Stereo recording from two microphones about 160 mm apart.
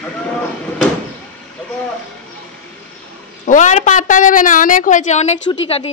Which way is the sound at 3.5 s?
50° left (ahead or behind).